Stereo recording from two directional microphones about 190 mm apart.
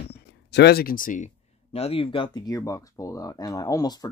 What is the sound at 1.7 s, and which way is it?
Speech, 30° left (ahead or behind).